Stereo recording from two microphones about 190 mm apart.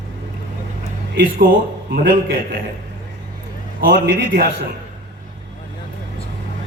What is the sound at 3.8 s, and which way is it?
Speech, 60° right (ahead or behind).